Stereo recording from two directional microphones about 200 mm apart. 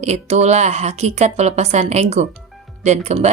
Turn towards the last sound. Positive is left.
turn(degrees=-35)  # may be behind; listen again after turning